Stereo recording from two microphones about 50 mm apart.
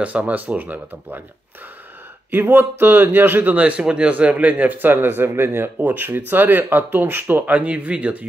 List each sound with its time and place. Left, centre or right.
0.0 s speech: right
2.3 s speech: right
3.5 s a man's voice: right